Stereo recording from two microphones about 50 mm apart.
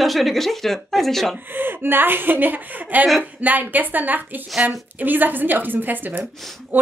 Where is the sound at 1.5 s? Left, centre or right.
Right.